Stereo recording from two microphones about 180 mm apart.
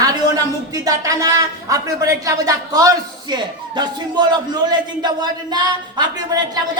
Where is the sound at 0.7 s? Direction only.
20° right (ahead or behind).